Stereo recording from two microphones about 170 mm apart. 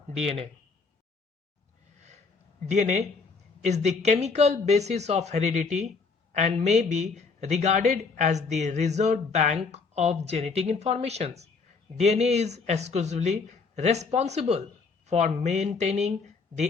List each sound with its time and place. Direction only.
2.6 s speech: 45° right (ahead or behind)